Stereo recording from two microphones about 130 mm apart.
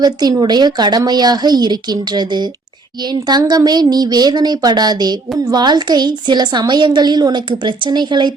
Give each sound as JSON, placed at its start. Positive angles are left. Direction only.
{"t": 0.0, "sound": "a woman's voice", "side_deg": -30}